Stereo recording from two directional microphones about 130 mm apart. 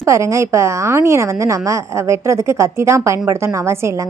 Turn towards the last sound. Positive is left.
turn(degrees=-25)  # may be behind; listen again after turning